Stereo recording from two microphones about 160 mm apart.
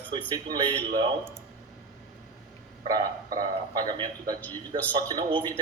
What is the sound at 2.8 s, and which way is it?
A man's voice, 25° right (ahead or behind).